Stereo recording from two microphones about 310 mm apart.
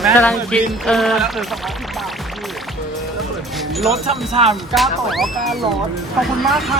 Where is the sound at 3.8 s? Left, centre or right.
Centre.